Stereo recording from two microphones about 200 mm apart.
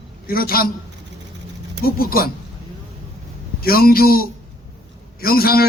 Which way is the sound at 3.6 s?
50° left (ahead or behind).